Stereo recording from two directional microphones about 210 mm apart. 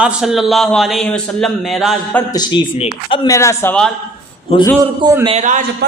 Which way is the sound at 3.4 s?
10° left (ahead or behind).